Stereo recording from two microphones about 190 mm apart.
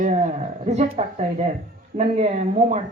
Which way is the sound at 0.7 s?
35° right (ahead or behind).